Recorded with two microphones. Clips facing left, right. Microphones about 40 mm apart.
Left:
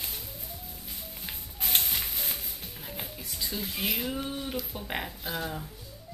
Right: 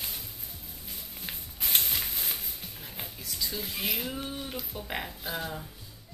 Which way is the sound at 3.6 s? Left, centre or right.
Centre.